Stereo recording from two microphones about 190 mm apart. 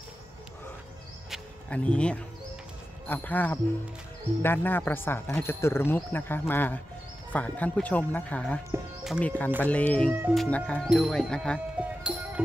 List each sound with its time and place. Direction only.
1.3 s music: 5° left (ahead or behind)
3.1 s speech: 10° left (ahead or behind)
11.7 s music: 5° right (ahead or behind)